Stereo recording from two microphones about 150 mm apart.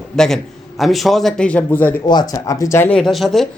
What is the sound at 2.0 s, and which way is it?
Speech, 30° left (ahead or behind).